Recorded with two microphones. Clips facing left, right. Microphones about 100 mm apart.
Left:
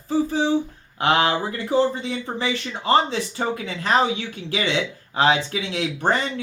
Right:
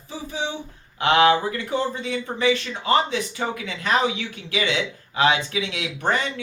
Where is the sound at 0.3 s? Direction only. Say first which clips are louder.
Left 8 dB; 35° left (ahead or behind).